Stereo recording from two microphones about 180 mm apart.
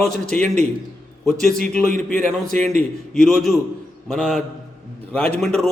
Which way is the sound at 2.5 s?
40° right (ahead or behind).